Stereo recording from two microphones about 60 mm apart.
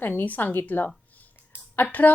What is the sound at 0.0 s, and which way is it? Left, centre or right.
A woman's voice, left.